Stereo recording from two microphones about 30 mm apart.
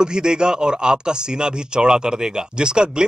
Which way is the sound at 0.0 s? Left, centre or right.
Right.